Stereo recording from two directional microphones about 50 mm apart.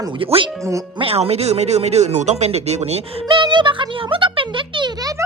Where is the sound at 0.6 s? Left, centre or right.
Right.